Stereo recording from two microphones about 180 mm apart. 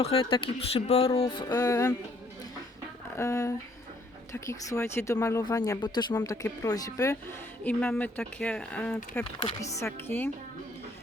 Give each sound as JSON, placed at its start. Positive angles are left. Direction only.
{"t": 0.0, "sound": "speech", "side_deg": 30}
{"t": 3.2, "sound": "speech", "side_deg": 15}
{"t": 9.4, "sound": "speech", "side_deg": 20}